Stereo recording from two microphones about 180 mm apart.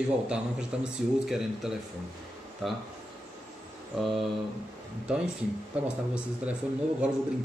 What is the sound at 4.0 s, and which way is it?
Speech, centre (ahead or behind).